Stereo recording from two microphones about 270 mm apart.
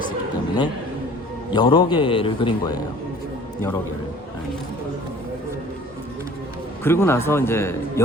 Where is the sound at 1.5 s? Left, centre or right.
Centre.